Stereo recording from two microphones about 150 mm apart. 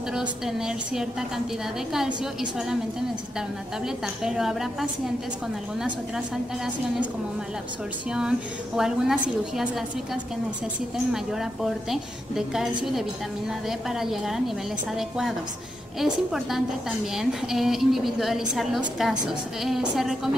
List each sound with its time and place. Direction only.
0.1 s a woman's voice: 5° right (ahead or behind)
3.3 s a woman's voice: 5° right (ahead or behind)
6.1 s a woman's voice: 5° right (ahead or behind)
8.1 s a woman's voice: 5° right (ahead or behind)
11.3 s a woman's voice: 5° right (ahead or behind)